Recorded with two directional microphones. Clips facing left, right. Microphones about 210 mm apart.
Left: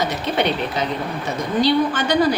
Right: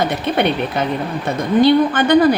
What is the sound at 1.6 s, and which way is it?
Speech, 55° right (ahead or behind).